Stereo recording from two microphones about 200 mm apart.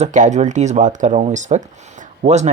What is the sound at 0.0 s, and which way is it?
Speech, 40° right (ahead or behind).